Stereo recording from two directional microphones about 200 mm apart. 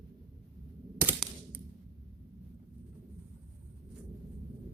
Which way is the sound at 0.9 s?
10° right (ahead or behind).